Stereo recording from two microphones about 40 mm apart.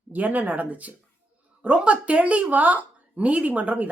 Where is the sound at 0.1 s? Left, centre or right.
Right.